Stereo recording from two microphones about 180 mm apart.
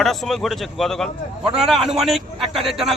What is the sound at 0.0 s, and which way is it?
A man's voice, centre (ahead or behind).